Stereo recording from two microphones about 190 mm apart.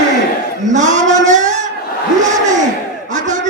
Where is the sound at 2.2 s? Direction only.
40° right (ahead or behind).